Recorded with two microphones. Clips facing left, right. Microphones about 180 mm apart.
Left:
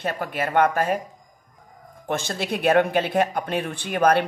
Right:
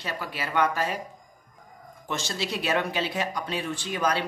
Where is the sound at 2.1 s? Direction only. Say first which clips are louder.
Left 5 dB; 55° left (ahead or behind).